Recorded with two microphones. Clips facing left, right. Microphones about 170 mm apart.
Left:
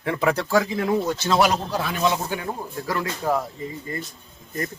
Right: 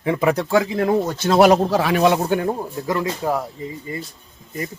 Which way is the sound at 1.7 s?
75° right (ahead or behind).